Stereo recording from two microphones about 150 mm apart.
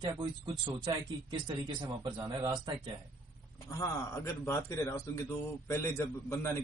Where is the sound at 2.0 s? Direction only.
25° right (ahead or behind).